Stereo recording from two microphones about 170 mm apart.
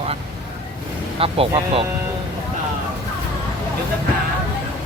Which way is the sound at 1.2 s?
35° right (ahead or behind).